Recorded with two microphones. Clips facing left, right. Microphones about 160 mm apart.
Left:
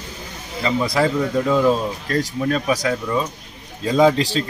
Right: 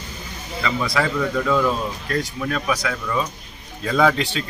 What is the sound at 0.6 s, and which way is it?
Speech, 35° left (ahead or behind).